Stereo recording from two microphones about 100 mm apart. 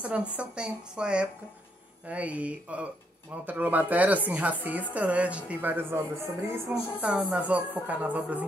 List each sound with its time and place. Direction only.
0.0 s speech: 15° right (ahead or behind)
7.1 s speech: 10° right (ahead or behind)